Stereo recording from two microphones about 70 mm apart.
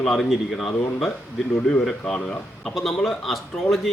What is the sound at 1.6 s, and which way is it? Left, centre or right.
Speech, centre.